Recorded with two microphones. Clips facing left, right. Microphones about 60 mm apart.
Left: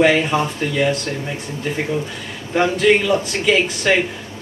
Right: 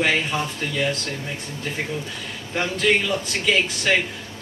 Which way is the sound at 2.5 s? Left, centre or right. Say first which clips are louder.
Left 6 dB; centre.